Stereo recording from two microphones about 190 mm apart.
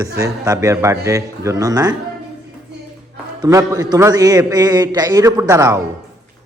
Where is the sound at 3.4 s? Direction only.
15° right (ahead or behind).